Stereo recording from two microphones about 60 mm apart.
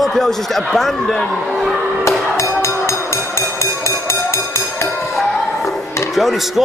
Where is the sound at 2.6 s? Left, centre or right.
Left.